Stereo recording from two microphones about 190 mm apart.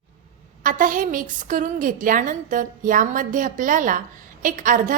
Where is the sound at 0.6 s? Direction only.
45° right (ahead or behind).